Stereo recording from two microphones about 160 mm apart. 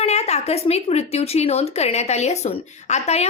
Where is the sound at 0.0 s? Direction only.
40° left (ahead or behind).